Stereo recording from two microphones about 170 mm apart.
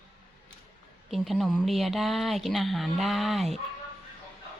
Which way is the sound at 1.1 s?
Centre (ahead or behind).